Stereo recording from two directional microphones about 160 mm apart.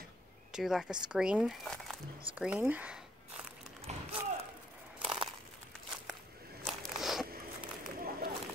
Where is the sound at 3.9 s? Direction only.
45° right (ahead or behind).